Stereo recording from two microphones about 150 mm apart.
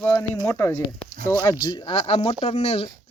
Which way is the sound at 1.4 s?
30° left (ahead or behind).